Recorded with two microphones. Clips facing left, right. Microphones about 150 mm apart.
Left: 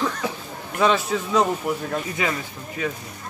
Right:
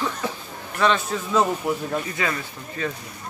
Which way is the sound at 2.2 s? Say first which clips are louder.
Left 1 dB; 15° left (ahead or behind).